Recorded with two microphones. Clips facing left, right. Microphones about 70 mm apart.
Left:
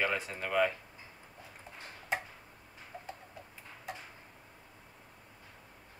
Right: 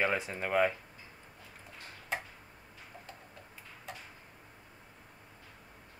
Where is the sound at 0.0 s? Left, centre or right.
Right.